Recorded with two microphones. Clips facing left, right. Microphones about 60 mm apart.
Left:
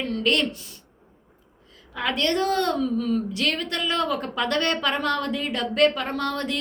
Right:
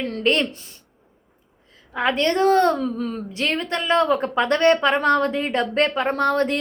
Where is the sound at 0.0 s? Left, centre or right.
Right.